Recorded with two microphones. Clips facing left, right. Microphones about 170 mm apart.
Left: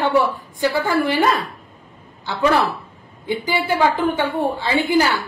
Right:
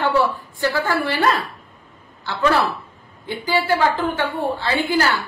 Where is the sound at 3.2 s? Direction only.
15° left (ahead or behind).